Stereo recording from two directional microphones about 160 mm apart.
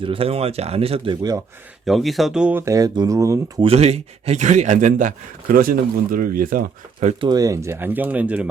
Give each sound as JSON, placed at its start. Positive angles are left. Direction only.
{"t": 0.0, "sound": "speech", "side_deg": -35}
{"t": 1.8, "sound": "speech", "side_deg": 0}
{"t": 3.6, "sound": "speech", "side_deg": -40}
{"t": 7.3, "sound": "speech", "side_deg": -20}